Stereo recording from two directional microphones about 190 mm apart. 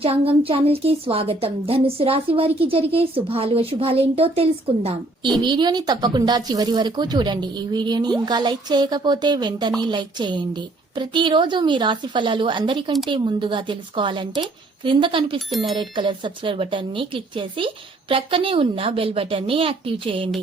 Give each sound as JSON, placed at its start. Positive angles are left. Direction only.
{"t": 0.0, "sound": "a woman's voice", "side_deg": -30}